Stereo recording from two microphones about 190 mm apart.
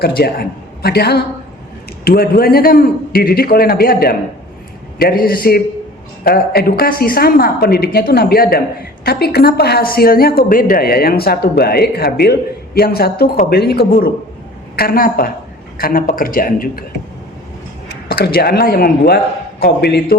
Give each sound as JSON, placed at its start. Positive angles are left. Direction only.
{"t": 0.0, "sound": "a man's voice", "side_deg": 55}
{"t": 17.8, "sound": "a woman's voice", "side_deg": 55}